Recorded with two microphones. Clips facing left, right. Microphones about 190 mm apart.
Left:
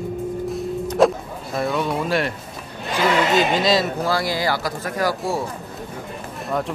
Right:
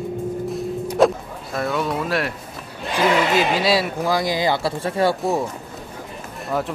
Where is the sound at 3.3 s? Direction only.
10° right (ahead or behind); by 5.2 s 30° right (ahead or behind).